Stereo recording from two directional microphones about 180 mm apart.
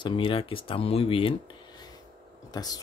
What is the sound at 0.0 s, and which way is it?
Speech, 30° left (ahead or behind).